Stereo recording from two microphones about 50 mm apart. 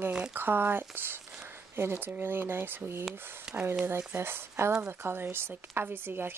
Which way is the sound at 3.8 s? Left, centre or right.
Right.